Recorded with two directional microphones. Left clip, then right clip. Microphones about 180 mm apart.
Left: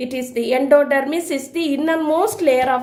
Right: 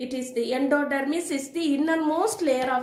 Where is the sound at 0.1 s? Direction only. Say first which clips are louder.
Left 7 dB; 45° left (ahead or behind).